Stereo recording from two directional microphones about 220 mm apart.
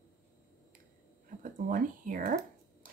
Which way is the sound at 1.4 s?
40° right (ahead or behind).